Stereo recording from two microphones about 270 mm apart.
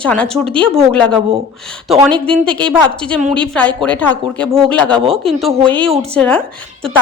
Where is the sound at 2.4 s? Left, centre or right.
Centre.